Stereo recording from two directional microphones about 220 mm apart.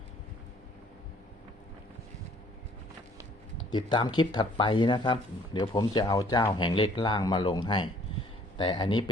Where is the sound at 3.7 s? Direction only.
20° left (ahead or behind).